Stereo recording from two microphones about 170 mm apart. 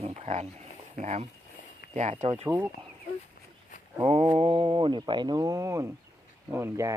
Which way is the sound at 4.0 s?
35° right (ahead or behind).